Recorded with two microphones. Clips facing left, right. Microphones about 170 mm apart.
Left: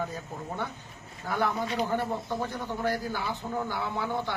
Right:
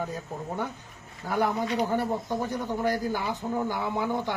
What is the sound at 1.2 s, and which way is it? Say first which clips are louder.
A man's voice: right 3 dB; 10° right (ahead or behind).